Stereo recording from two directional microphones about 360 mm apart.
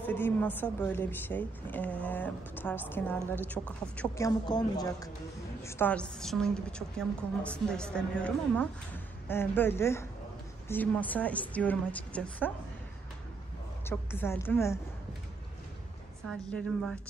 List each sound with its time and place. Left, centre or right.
0.0 s a woman's voice: centre
13.8 s a woman's voice: centre
16.3 s a woman's voice: centre